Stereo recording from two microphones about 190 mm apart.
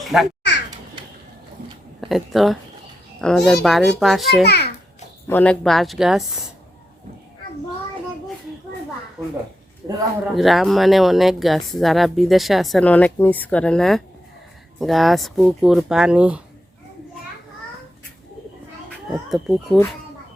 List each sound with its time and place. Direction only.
0.0 s speech: centre (ahead or behind)
2.0 s speech: centre (ahead or behind)
4.4 s a child's voice: 60° left (ahead or behind)
5.3 s speech: 10° left (ahead or behind)
10.3 s speech: centre (ahead or behind)
19.1 s speech: centre (ahead or behind)